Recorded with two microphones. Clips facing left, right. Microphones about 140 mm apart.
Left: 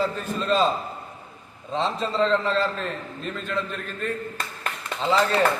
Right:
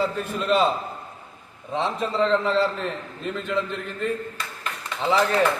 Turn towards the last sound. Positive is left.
turn(degrees=-15)  # may be behind; listen again after turning